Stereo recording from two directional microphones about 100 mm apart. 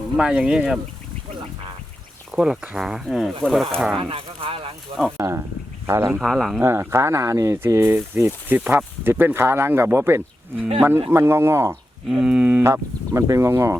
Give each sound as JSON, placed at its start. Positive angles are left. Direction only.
{"t": 0.2, "sound": "speech", "side_deg": -10}
{"t": 2.3, "sound": "speech", "side_deg": -5}
{"t": 3.9, "sound": "speech", "side_deg": -60}
{"t": 5.1, "sound": "speech", "side_deg": -30}
{"t": 6.1, "sound": "speech", "side_deg": 0}
{"t": 6.6, "sound": "speech", "side_deg": -25}
{"t": 12.0, "sound": "speech", "side_deg": -5}
{"t": 12.6, "sound": "speech", "side_deg": -30}